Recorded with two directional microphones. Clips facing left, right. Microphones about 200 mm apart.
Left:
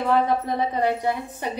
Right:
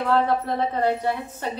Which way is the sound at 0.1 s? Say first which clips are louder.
Even; 15° left (ahead or behind).